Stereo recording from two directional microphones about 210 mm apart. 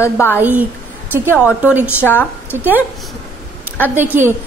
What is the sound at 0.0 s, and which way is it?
Speech, 10° left (ahead or behind).